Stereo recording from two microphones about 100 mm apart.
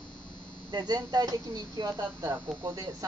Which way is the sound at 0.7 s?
45° right (ahead or behind).